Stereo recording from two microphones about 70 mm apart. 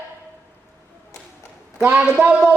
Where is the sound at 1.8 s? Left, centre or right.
Right.